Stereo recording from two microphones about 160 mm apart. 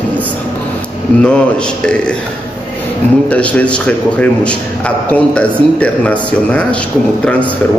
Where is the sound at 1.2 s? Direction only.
5° left (ahead or behind).